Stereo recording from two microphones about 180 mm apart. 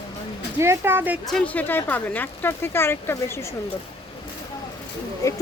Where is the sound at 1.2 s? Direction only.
5° left (ahead or behind).